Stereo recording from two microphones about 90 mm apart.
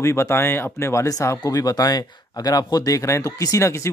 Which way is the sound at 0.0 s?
30° left (ahead or behind).